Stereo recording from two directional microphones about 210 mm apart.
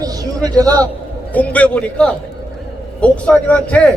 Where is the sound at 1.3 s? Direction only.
5° left (ahead or behind).